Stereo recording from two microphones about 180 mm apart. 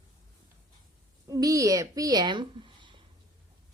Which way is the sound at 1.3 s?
20° right (ahead or behind).